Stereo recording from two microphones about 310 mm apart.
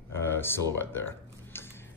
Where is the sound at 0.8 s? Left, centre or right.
Centre.